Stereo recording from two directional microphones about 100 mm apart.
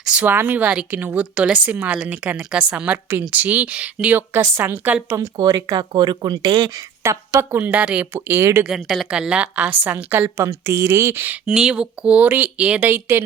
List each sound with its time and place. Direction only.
0.0 s a woman's voice: 10° right (ahead or behind)
5.4 s speech: 40° right (ahead or behind); by 6.7 s 55° right (ahead or behind)
7.0 s a woman's voice: 30° right (ahead or behind)
7.6 s a woman's voice: 15° right (ahead or behind)
8.1 s speech: 25° right (ahead or behind)
8.6 s a woman's voice: 5° right (ahead or behind)
11.5 s a woman's voice: 5° right (ahead or behind)